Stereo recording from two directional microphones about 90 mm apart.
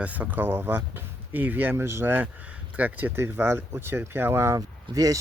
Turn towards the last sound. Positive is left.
turn(degrees=-40)  # may be behind; listen again after turning